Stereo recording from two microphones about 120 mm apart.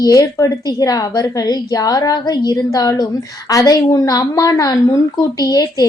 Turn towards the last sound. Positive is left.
turn(degrees=30)  # may be behind; listen again after turning